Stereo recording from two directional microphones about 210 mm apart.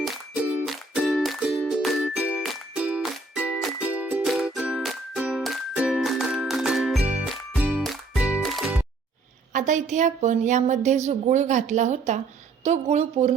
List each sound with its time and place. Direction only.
0.0 s music: centre (ahead or behind)
9.5 s a woman's voice: 35° right (ahead or behind)